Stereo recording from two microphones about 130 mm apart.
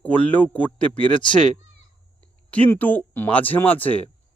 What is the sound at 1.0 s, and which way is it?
Speech, 40° left (ahead or behind).